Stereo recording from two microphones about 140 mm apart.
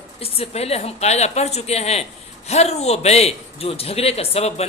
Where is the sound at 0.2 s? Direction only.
45° left (ahead or behind).